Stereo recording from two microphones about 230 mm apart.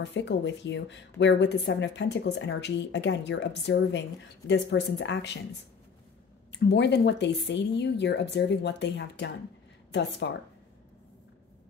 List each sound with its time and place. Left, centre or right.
0.0 s speech: left
6.5 s speech: left